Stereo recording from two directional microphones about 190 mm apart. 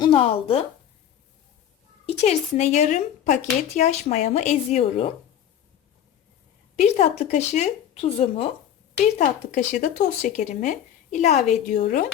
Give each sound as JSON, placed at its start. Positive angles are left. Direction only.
{"t": 0.0, "sound": "speech", "side_deg": 30}
{"t": 2.0, "sound": "speech", "side_deg": 35}
{"t": 6.7, "sound": "speech", "side_deg": 40}
{"t": 11.7, "sound": "speech", "side_deg": 60}